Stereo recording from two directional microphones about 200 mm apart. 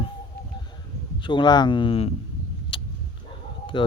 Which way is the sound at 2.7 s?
25° left (ahead or behind).